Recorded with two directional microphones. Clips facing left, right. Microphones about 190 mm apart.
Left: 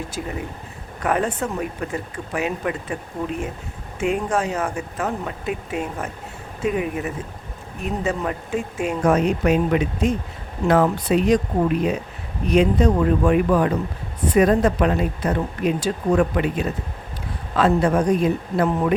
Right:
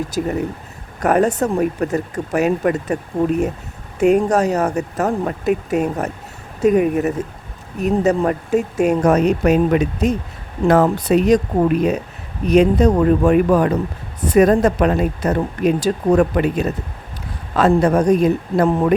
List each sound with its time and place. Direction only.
0.1 s speech: 40° right (ahead or behind)
12.5 s speech: 40° right (ahead or behind)